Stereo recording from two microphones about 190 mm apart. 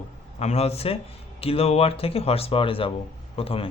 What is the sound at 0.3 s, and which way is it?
Speech, 35° left (ahead or behind).